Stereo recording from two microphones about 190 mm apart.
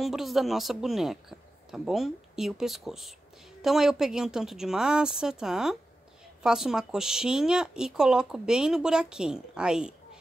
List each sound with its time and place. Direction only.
0.0 s speech: centre (ahead or behind)